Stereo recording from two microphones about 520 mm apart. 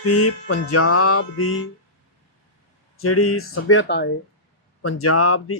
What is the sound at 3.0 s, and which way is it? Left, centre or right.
Music, left.